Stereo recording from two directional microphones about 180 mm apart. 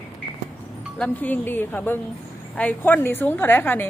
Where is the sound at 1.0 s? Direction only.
10° left (ahead or behind).